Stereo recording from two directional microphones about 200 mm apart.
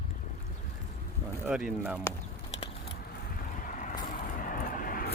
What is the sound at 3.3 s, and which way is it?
Vehicle, 40° left (ahead or behind).